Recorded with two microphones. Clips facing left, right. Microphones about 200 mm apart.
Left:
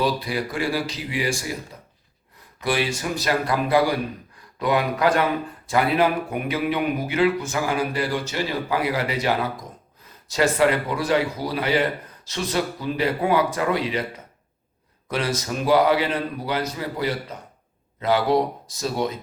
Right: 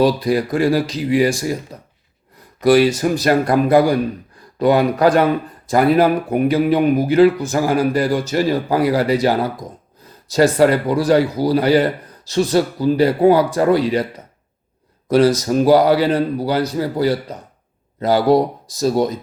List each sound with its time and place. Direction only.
0.0 s speech: 40° right (ahead or behind)
2.6 s a man's voice: 40° right (ahead or behind)
15.0 s a man's voice: 35° right (ahead or behind)